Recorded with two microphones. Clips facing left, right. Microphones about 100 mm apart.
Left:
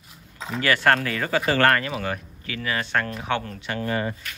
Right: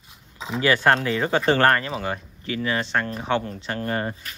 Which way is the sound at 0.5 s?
20° right (ahead or behind).